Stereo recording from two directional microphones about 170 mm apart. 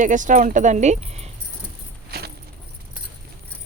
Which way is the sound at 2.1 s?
70° right (ahead or behind).